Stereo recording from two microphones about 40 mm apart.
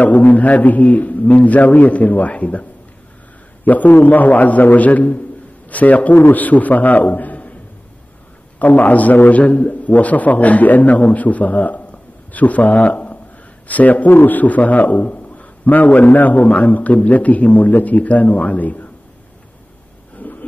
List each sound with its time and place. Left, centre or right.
0.0 s a man's voice: left
3.6 s a man's voice: left
6.1 s a man's voice: left
6.4 s a man's voice: left
8.5 s a man's voice: left
20.2 s vehicle: left